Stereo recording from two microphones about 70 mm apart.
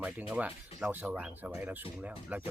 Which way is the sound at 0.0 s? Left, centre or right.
Centre.